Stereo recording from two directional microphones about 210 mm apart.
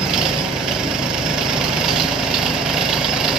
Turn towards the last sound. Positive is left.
turn(degrees=-5)  # may be behind; listen again after turning